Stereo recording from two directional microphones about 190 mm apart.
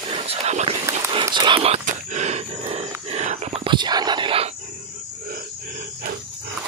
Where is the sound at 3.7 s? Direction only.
20° right (ahead or behind).